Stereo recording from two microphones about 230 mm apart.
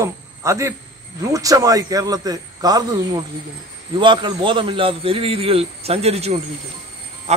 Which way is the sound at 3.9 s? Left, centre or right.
Right.